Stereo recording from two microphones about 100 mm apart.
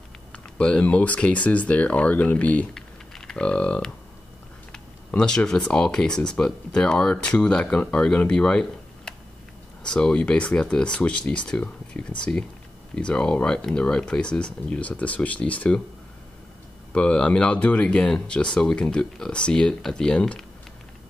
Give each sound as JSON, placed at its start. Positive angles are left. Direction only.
{"t": 0.3, "sound": "speech", "side_deg": 10}
{"t": 16.9, "sound": "speech", "side_deg": 10}